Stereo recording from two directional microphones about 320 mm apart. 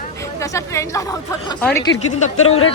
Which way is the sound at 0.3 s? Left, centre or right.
Centre.